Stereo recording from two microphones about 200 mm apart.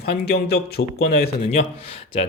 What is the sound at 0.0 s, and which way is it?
Speech, 50° left (ahead or behind).